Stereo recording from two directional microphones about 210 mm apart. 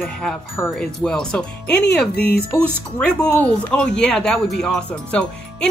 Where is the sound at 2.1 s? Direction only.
45° left (ahead or behind).